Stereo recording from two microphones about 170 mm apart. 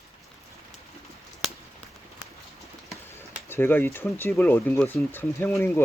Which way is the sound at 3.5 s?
10° left (ahead or behind).